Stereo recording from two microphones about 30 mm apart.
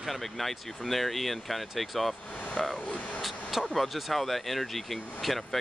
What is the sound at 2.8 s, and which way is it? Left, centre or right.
Speech, left.